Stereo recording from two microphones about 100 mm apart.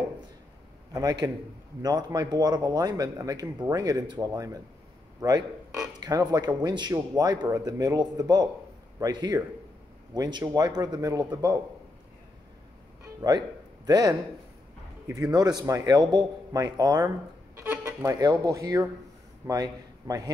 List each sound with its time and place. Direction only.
0.9 s a man's voice: 40° right (ahead or behind)
5.9 s a man's voice: 35° right (ahead or behind)
13.0 s music: 40° right (ahead or behind)
13.8 s a man's voice: 40° right (ahead or behind)
17.6 s music: 25° right (ahead or behind)
18.2 s a man's voice: 35° right (ahead or behind)